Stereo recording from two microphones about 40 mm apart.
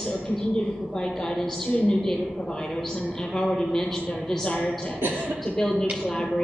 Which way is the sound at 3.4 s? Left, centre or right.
Centre.